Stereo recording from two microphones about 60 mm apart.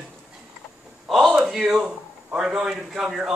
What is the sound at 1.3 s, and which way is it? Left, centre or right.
A man's voice, centre.